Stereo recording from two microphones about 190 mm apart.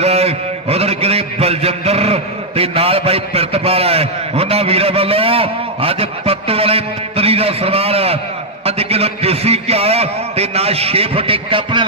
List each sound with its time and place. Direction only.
0.0 s a man's voice: 35° right (ahead or behind)